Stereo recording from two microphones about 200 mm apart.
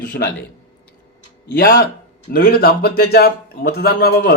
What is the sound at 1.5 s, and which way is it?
A man's voice, 50° left (ahead or behind).